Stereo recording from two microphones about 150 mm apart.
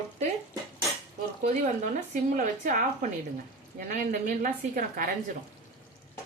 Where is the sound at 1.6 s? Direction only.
60° right (ahead or behind).